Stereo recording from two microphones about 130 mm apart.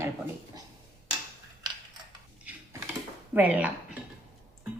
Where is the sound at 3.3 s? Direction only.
10° right (ahead or behind).